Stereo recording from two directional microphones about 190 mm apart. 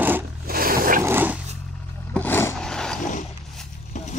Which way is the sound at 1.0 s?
10° right (ahead or behind).